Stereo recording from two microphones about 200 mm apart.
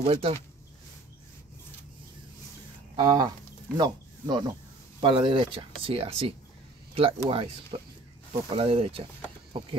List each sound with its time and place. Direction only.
0.0 s speech: 30° right (ahead or behind)
3.0 s speech: 20° right (ahead or behind)